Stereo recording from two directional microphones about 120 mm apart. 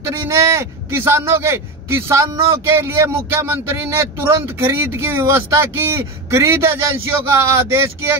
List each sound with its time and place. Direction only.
0.0 s a man's voice: 20° right (ahead or behind)